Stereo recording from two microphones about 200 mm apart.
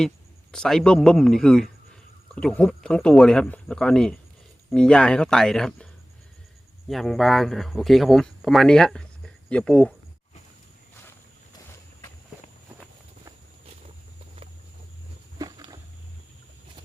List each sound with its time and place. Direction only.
0.5 s speech: 5° left (ahead or behind)
15.4 s walk: 20° right (ahead or behind)